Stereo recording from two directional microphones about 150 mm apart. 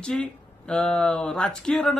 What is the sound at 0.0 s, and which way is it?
Speech, 5° left (ahead or behind).